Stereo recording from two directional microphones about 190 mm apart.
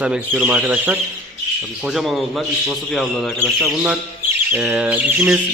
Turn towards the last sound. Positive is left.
turn(degrees=-5)  # may be behind; listen again after turning